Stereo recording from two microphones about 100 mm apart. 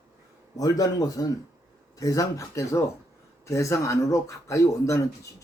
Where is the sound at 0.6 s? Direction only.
35° left (ahead or behind).